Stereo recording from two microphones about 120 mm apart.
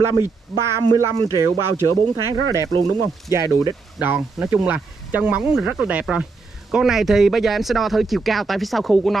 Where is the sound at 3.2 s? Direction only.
30° right (ahead or behind).